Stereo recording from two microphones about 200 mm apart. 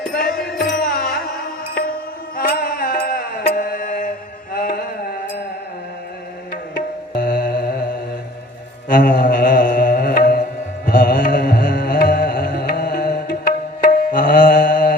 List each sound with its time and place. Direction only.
0.1 s music: 45° left (ahead or behind)
2.3 s music: 50° left (ahead or behind)
6.5 s music: 45° left (ahead or behind)
8.9 s music: 45° left (ahead or behind)
10.8 s carnatic music: 45° left (ahead or behind)